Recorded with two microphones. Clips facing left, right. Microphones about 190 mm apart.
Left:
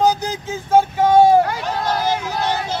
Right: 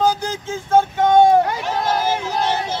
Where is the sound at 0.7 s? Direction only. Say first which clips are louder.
Left 1 dB; 5° left (ahead or behind).